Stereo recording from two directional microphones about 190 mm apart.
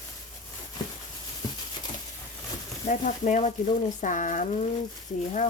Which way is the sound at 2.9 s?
40° left (ahead or behind).